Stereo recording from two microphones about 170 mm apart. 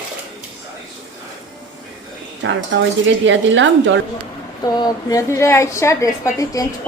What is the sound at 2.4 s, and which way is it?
Speech, 90° right.